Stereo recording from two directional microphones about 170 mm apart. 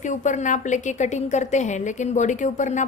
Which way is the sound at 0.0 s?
45° left (ahead or behind).